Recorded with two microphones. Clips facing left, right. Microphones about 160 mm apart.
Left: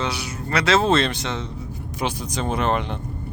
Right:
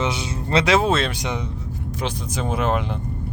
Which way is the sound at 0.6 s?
15° right (ahead or behind).